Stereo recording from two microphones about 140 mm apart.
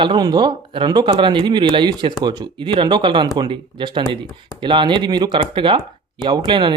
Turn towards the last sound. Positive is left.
turn(degrees=-35)  # may be behind; listen again after turning